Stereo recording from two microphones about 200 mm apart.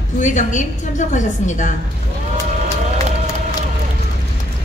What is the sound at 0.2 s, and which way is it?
A woman's voice, 40° left (ahead or behind).